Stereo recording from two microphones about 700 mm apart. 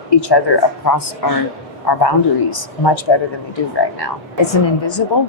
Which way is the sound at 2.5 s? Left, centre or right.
Left.